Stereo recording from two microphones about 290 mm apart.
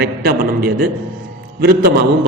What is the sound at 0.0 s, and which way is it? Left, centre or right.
A man's voice, right.